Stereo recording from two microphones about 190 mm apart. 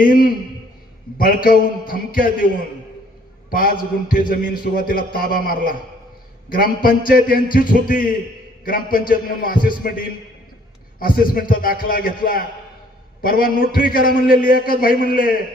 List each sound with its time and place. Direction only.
0.0 s a man's voice: 45° left (ahead or behind)